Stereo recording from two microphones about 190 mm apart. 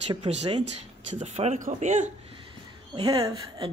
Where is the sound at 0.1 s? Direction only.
30° right (ahead or behind).